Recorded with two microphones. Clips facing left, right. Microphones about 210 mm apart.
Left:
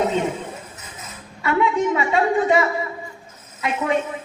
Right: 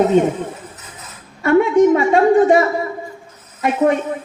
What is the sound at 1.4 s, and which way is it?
A woman's voice, 45° right (ahead or behind).